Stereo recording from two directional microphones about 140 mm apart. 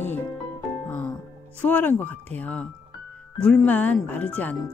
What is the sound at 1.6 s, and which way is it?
Speech, 10° left (ahead or behind).